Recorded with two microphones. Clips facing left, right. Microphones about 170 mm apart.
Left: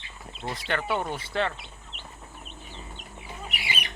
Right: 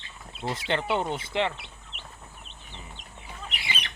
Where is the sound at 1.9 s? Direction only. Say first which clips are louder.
Even; 35° left (ahead or behind).